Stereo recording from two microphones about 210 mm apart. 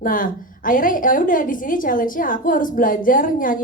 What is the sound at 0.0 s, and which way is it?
A woman's voice, 40° left (ahead or behind).